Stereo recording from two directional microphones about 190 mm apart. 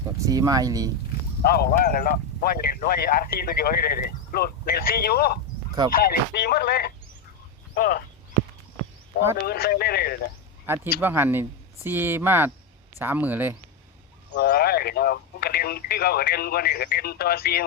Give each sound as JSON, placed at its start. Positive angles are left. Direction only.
{"t": 0.3, "sound": "speech", "side_deg": -20}
{"t": 1.4, "sound": "speech", "side_deg": 55}
{"t": 9.1, "sound": "speech", "side_deg": 50}
{"t": 10.7, "sound": "speech", "side_deg": -10}
{"t": 14.3, "sound": "speech", "side_deg": 55}